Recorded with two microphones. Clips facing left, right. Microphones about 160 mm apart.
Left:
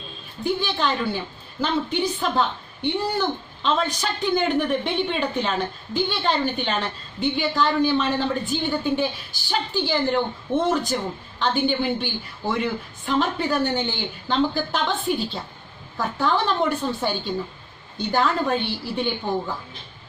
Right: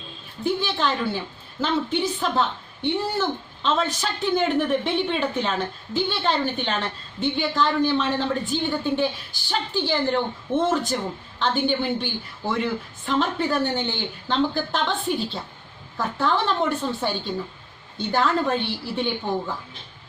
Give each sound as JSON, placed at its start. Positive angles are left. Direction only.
{"t": 0.4, "sound": "a woman's voice", "side_deg": 0}